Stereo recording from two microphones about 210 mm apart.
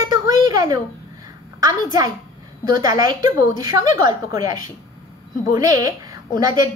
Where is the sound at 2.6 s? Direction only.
20° right (ahead or behind).